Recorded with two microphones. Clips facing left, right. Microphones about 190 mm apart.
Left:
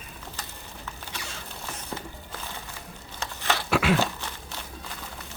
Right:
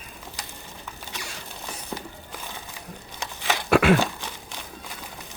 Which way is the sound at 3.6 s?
55° right (ahead or behind).